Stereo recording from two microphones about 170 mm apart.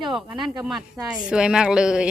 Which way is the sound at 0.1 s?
Centre (ahead or behind).